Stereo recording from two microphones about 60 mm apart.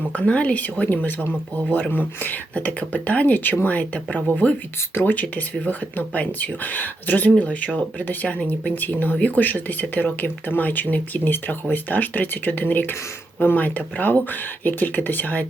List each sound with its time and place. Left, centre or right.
0.1 s speech: left